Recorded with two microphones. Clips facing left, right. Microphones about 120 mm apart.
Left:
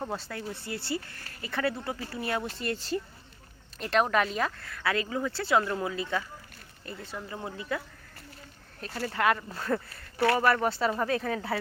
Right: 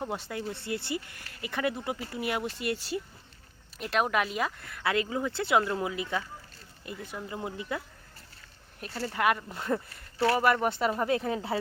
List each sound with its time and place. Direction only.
0.1 s speech: 15° right (ahead or behind)
9.1 s speech: 15° right (ahead or behind)